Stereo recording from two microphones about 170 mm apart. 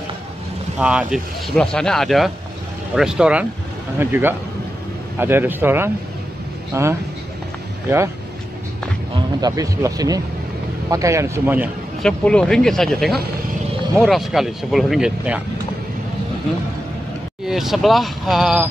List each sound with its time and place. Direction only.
0.7 s speech: 5° right (ahead or behind)
9.4 s speech: 20° right (ahead or behind)
12.0 s speech: 5° left (ahead or behind)
17.5 s speech: centre (ahead or behind)